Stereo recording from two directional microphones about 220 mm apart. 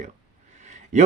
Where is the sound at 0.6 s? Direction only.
30° right (ahead or behind).